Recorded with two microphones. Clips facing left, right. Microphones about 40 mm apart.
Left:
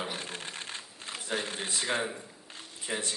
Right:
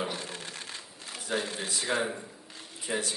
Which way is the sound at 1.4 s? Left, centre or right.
Left.